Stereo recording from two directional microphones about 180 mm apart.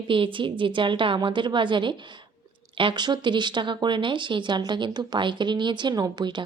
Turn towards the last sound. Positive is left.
turn(degrees=-25)  # may be behind; listen again after turning